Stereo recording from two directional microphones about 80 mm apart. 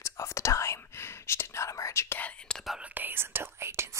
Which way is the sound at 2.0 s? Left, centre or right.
Centre.